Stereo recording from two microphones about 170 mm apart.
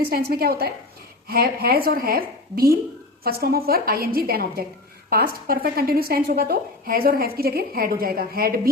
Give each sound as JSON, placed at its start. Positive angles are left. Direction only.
{"t": 0.1, "sound": "speech", "side_deg": -65}